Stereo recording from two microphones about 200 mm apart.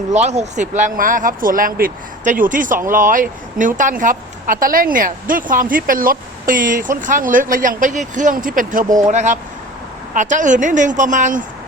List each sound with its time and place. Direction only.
0.1 s a woman's voice: 35° right (ahead or behind)